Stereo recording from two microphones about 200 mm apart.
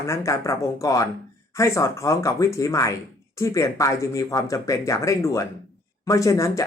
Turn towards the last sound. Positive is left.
turn(degrees=15)  # may be behind; listen again after turning